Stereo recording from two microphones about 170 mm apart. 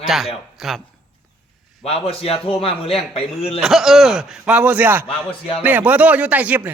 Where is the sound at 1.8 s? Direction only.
35° left (ahead or behind).